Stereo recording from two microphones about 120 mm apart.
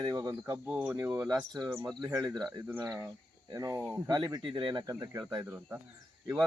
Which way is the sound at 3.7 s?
15° right (ahead or behind).